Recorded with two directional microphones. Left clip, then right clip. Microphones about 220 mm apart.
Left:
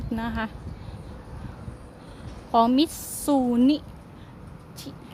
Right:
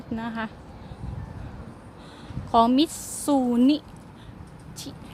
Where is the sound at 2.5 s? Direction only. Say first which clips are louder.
Right 1 dB; centre (ahead or behind).